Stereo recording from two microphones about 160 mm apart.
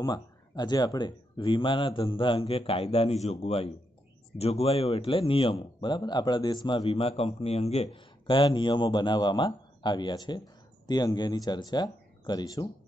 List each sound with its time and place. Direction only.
0.0 s speech: 25° left (ahead or behind)